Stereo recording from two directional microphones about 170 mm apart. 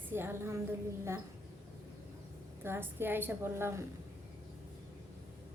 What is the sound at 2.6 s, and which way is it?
A woman's voice, 15° right (ahead or behind).